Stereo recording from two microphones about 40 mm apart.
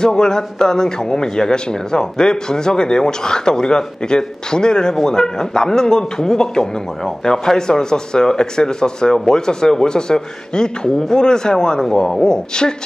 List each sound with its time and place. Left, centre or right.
0.0 s speech: centre